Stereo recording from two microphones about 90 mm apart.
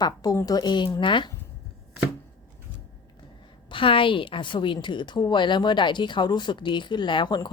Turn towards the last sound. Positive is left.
turn(degrees=60)  # may be behind; listen again after turning